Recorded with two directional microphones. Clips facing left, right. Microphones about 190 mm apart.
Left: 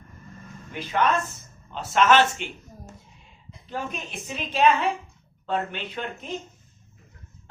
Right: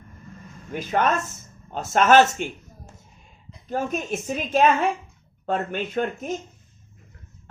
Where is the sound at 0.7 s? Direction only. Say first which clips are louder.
Right 1 dB; 45° right (ahead or behind).